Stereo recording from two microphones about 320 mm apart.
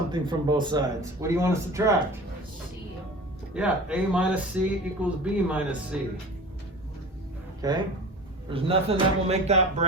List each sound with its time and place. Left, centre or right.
0.1 s a man's voice: centre
3.5 s speech: centre
7.6 s a man's voice: centre